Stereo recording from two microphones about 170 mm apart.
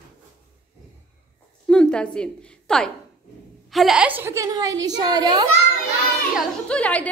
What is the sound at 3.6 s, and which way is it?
A woman's voice, centre (ahead or behind).